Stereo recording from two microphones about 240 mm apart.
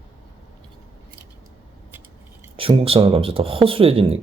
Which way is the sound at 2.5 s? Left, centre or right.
Right.